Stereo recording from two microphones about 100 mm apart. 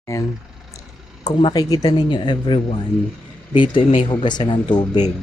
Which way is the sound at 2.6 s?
90° left.